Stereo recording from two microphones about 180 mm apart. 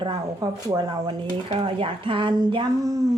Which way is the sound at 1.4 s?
30° right (ahead or behind).